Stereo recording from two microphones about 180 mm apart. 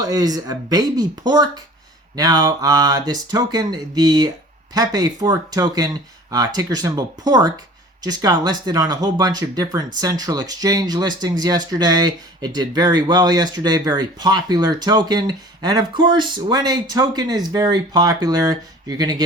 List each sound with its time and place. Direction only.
0.0 s speech: 20° right (ahead or behind)